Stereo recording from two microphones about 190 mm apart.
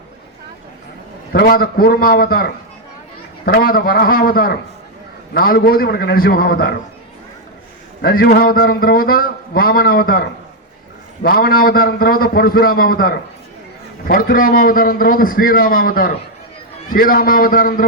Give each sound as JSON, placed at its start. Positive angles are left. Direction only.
{"t": 1.3, "sound": "a man's voice", "side_deg": 50}
{"t": 8.0, "sound": "a man's voice", "side_deg": 55}